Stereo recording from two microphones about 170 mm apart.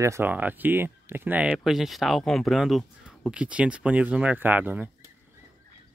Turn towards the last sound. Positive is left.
turn(degrees=-10)  # may be behind; listen again after turning